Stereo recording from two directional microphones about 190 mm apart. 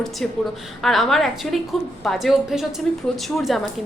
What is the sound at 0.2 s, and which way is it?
A woman's voice, 5° left (ahead or behind).